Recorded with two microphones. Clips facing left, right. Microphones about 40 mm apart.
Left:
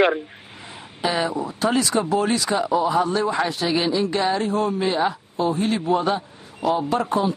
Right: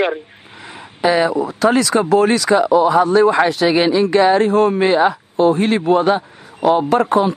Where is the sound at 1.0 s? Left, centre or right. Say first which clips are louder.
Right 8 dB; right.